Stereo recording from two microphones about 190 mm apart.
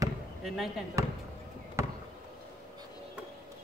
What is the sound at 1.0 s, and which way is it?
Speech, 15° right (ahead or behind).